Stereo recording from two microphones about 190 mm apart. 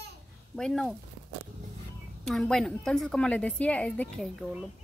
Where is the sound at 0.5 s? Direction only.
5° left (ahead or behind).